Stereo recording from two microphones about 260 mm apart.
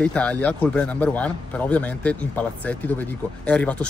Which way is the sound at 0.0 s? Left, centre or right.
Centre.